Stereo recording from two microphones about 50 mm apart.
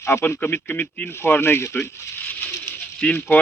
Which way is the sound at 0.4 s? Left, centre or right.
Left.